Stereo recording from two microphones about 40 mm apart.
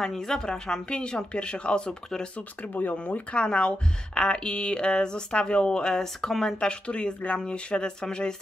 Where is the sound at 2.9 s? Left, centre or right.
Left; by 6.5 s centre.